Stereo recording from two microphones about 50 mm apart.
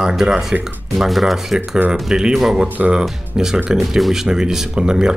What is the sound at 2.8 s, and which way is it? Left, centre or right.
Speech, right.